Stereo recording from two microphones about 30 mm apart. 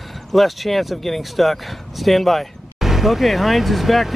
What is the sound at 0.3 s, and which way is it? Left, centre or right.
Speech, centre.